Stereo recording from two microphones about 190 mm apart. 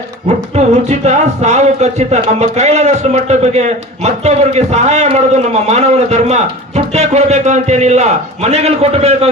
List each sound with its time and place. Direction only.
0.5 s speech: 35° right (ahead or behind)